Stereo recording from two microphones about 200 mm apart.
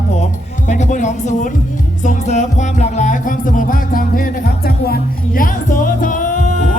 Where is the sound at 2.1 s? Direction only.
35° left (ahead or behind).